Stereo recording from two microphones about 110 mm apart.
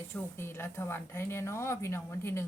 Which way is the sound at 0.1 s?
20° left (ahead or behind).